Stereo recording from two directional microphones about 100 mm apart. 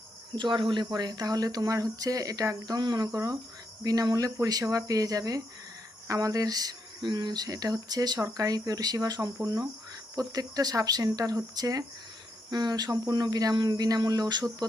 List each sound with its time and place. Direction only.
0.3 s speech: 50° right (ahead or behind)